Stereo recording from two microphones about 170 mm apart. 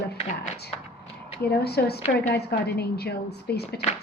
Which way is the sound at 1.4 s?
70° left (ahead or behind).